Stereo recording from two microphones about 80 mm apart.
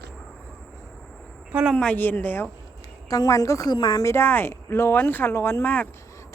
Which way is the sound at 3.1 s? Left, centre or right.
Left.